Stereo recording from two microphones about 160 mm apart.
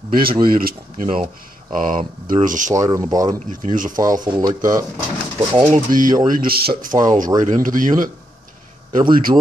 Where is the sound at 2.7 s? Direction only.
20° right (ahead or behind).